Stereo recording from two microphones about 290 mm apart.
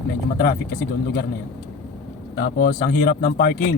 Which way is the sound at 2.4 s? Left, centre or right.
Left.